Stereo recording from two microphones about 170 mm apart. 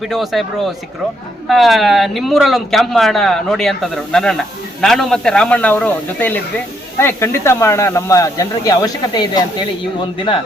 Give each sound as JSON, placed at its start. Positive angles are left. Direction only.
{"t": 0.1, "sound": "speech", "side_deg": 0}